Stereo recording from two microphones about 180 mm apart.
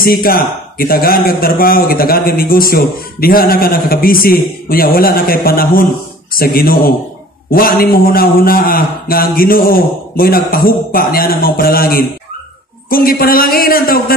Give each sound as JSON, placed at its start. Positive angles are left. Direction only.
{"t": 0.0, "sound": "speech", "side_deg": 55}